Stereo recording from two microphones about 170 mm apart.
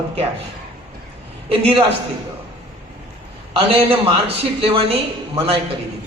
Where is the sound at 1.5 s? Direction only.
35° right (ahead or behind).